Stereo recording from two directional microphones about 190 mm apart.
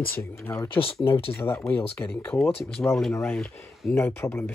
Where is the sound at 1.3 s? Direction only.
10° left (ahead or behind).